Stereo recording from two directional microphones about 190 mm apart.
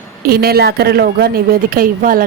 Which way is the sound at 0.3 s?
55° right (ahead or behind).